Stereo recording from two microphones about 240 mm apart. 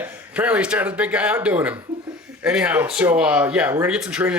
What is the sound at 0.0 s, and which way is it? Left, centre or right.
Speech, centre.